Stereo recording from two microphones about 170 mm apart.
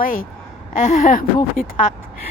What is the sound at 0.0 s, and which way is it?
A woman's voice, 55° left (ahead or behind).